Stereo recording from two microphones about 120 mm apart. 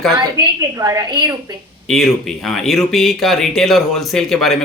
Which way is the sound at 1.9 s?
5° left (ahead or behind).